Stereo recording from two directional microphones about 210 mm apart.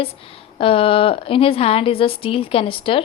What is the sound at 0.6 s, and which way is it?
A woman's voice, 25° left (ahead or behind).